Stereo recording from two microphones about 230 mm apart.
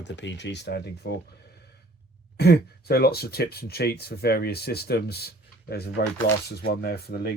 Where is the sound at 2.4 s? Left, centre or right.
Left.